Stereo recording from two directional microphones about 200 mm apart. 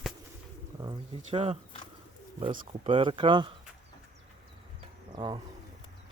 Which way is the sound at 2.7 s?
25° right (ahead or behind).